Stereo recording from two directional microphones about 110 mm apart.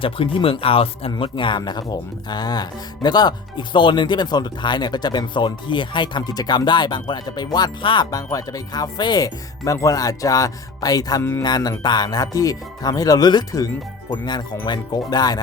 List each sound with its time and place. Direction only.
0.0 s speech: 55° left (ahead or behind)
8.1 s speech: 30° left (ahead or behind)
11.2 s speech: 20° left (ahead or behind)
11.4 s speech: 40° left (ahead or behind)